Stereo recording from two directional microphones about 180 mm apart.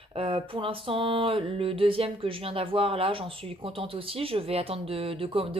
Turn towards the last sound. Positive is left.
turn(degrees=-30)  # may be behind; listen again after turning